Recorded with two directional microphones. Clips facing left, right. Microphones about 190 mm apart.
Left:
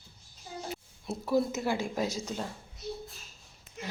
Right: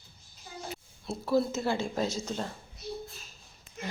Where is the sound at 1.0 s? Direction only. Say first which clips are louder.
Right 1 dB; 15° left (ahead or behind).